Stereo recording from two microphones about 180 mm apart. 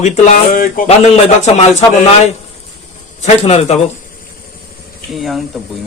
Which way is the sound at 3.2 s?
35° left (ahead or behind).